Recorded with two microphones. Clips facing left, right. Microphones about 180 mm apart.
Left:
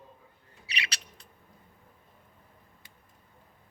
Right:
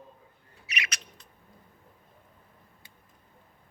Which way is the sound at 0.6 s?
30° left (ahead or behind).